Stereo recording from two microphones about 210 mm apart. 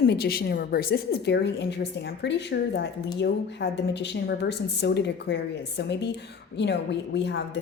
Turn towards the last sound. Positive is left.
turn(degrees=55)  # may be behind; listen again after turning